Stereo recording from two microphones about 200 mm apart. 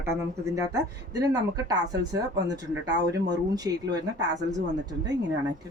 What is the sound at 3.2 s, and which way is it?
Speech, 20° right (ahead or behind).